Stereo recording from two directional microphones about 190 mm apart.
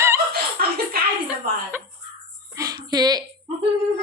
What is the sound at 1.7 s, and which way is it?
Caw, 10° right (ahead or behind).